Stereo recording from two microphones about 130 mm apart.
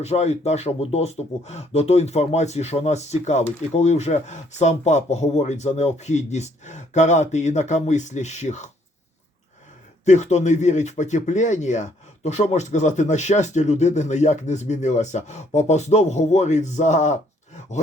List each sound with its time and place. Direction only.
0.0 s speech: 55° left (ahead or behind)
10.1 s speech: 60° left (ahead or behind)